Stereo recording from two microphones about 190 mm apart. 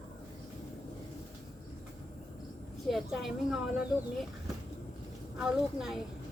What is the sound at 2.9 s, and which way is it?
Speech, centre (ahead or behind).